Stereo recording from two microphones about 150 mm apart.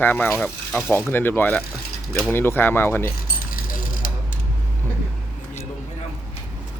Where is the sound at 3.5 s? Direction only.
70° left (ahead or behind).